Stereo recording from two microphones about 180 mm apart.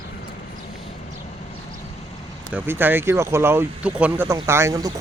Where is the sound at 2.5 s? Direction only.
10° right (ahead or behind).